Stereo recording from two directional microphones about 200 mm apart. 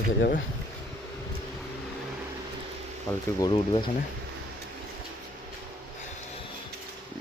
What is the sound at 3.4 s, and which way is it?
Speech, 25° left (ahead or behind).